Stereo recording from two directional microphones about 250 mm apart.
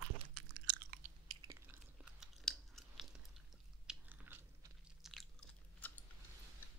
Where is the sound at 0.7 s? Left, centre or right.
Right.